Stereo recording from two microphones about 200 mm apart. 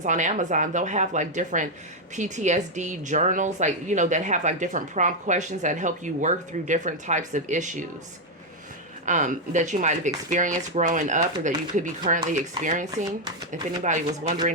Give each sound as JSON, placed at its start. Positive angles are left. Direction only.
{"t": 0.0, "sound": "a woman's voice", "side_deg": -35}
{"t": 9.0, "sound": "a woman's voice", "side_deg": -40}
{"t": 14.1, "sound": "speech", "side_deg": -20}